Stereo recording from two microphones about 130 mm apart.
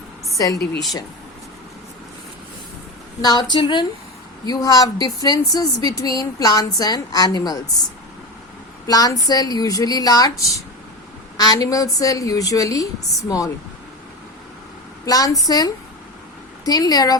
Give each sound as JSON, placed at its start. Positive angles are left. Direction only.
{"t": 0.3, "sound": "a woman's voice", "side_deg": 25}
{"t": 3.2, "sound": "speech", "side_deg": 30}
{"t": 8.9, "sound": "speech", "side_deg": 30}
{"t": 15.0, "sound": "speech", "side_deg": 30}